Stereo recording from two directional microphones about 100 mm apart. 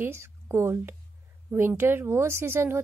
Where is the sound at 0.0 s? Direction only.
25° right (ahead or behind).